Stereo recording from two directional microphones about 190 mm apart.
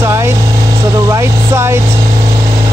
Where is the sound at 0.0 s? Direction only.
15° right (ahead or behind).